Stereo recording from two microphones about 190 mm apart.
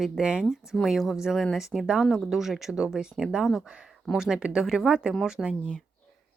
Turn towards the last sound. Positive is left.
turn(degrees=0)  # may be behind; listen again after turning